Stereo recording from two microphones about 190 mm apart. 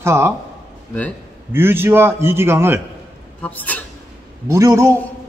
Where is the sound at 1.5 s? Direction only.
10° right (ahead or behind).